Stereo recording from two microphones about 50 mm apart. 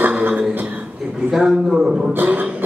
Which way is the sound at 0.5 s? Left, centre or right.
Right.